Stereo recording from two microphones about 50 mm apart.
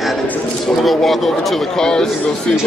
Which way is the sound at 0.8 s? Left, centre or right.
Centre.